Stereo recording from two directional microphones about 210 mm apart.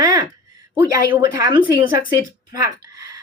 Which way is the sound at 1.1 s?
20° right (ahead or behind).